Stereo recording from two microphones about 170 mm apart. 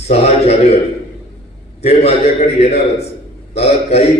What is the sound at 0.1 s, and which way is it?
Speech, 40° left (ahead or behind).